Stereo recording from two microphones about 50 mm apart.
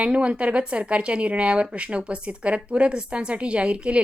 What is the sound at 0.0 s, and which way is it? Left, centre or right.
Speech, right.